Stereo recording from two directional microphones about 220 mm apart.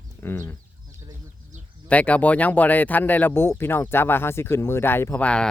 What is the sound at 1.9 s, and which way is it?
Speech, 5° left (ahead or behind).